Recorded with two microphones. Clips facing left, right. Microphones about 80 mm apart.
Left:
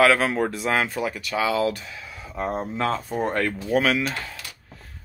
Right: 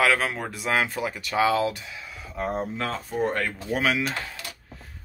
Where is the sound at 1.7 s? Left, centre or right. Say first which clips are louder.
Left 4 dB; centre.